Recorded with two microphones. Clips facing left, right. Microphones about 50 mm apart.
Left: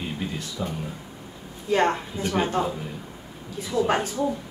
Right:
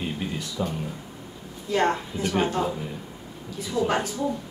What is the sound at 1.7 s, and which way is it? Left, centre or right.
Speech, left.